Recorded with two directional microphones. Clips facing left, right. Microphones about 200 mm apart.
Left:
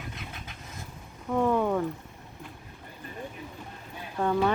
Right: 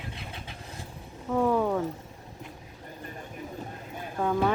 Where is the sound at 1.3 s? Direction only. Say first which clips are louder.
Even; 5° right (ahead or behind).